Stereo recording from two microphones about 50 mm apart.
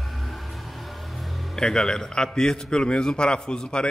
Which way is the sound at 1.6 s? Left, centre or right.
Centre.